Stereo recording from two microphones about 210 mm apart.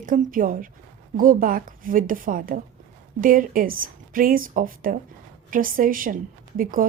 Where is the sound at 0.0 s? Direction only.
40° right (ahead or behind).